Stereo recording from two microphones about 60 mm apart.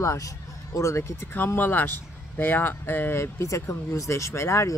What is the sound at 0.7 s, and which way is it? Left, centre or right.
Speech, left.